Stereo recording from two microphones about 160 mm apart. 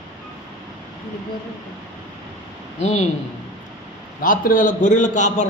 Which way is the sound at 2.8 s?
45° left (ahead or behind).